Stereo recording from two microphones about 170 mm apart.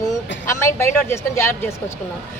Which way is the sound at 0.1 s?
15° left (ahead or behind).